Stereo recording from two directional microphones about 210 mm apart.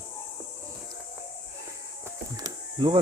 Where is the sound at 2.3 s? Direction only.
20° right (ahead or behind).